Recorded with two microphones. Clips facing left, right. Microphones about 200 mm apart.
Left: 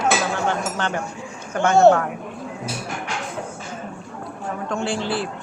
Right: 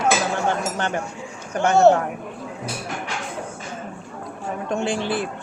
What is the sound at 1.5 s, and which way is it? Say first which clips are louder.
Speech: left 1 dB; 15° right (ahead or behind).